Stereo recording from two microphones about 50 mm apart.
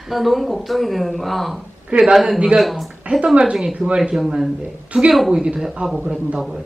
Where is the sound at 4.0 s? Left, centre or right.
Centre.